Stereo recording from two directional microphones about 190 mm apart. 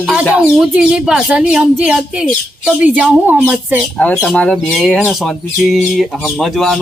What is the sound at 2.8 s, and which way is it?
Speech, 5° right (ahead or behind).